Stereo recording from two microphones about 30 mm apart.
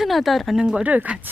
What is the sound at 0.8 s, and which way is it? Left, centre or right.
Speech, right.